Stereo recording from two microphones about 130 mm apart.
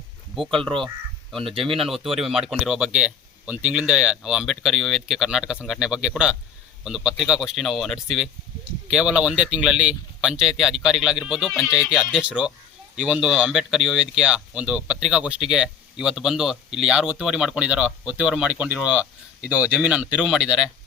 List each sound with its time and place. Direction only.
0.4 s speech: 45° right (ahead or behind)
1.8 s speech: centre (ahead or behind)